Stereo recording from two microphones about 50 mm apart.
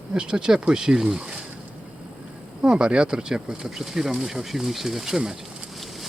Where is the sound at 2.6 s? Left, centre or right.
Centre.